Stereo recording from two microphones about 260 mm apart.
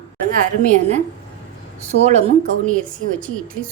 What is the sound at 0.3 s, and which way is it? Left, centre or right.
A woman's voice, right.